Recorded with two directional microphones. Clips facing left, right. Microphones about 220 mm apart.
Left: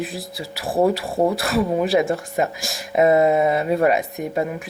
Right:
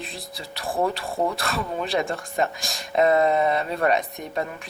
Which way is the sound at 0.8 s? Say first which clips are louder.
Left 7 dB; 20° left (ahead or behind).